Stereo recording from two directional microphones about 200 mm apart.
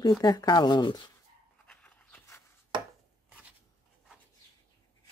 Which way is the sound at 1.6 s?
5° left (ahead or behind).